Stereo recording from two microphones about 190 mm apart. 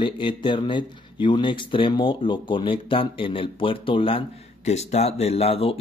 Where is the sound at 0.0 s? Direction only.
25° left (ahead or behind).